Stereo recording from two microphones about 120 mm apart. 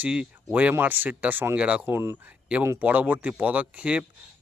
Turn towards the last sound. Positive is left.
turn(degrees=-10)  # may be behind; listen again after turning